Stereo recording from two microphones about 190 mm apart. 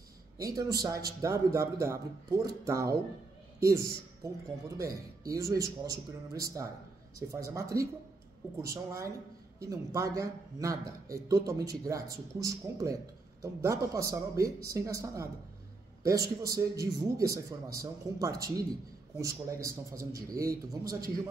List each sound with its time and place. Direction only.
0.6 s a man's voice: 20° right (ahead or behind)
7.2 s a man's voice: 15° right (ahead or behind)